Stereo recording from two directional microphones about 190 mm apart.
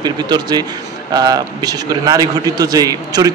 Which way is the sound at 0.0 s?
20° right (ahead or behind).